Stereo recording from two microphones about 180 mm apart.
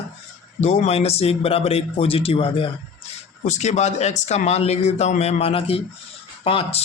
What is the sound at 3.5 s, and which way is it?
Speech, 40° left (ahead or behind).